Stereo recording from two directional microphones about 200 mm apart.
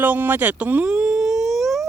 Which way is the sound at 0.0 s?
10° right (ahead or behind).